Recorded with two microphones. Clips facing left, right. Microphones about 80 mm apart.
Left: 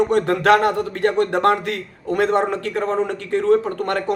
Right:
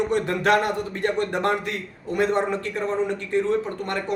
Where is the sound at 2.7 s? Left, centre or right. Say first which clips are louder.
Left 4 dB; left.